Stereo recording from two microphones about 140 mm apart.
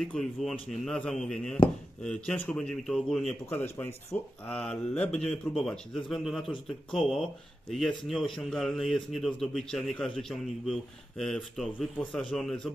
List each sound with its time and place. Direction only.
0.0 s a man's voice: centre (ahead or behind)
3.4 s a man's voice: 15° left (ahead or behind)